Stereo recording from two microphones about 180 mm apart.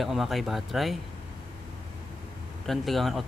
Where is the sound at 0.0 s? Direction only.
Centre (ahead or behind).